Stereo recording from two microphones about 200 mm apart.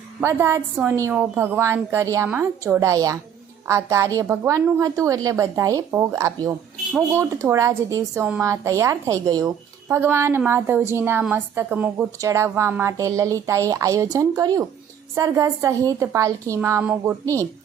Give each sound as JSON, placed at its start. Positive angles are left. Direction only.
{"t": 0.2, "sound": "a woman's voice", "side_deg": -15}